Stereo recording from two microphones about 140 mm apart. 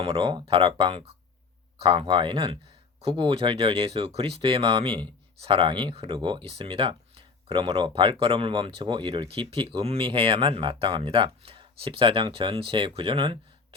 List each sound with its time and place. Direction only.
0.0 s speech: 40° right (ahead or behind)